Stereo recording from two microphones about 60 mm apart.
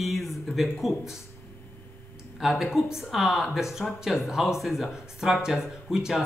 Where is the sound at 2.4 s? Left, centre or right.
Centre.